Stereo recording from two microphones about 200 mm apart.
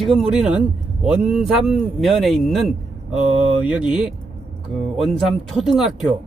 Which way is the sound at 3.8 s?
5° right (ahead or behind).